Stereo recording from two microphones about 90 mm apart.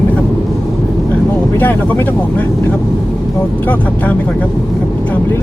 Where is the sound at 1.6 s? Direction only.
20° left (ahead or behind).